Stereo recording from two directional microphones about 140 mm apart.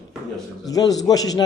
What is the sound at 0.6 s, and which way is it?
Speech, 25° left (ahead or behind).